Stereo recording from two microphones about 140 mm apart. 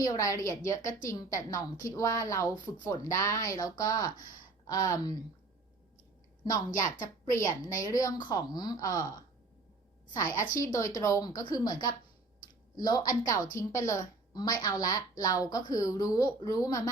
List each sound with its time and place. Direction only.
0.0 s a woman's voice: 25° left (ahead or behind)
7.3 s a woman's voice: 20° left (ahead or behind)